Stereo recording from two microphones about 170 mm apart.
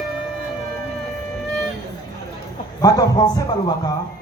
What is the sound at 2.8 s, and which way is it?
Speech, 20° left (ahead or behind).